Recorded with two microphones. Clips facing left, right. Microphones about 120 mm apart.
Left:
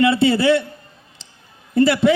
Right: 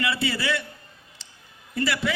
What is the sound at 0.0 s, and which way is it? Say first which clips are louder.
Speech: left 12 dB; 25° left (ahead or behind).